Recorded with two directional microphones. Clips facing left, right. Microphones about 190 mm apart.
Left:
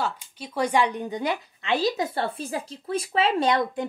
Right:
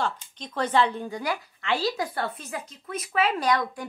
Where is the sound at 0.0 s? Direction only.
10° left (ahead or behind).